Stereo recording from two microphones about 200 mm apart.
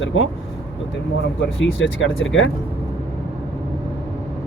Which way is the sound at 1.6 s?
70° left (ahead or behind).